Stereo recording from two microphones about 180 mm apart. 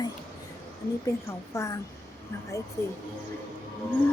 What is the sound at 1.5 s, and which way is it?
Speech, 15° left (ahead or behind).